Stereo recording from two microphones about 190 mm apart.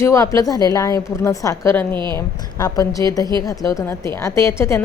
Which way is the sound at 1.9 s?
25° right (ahead or behind).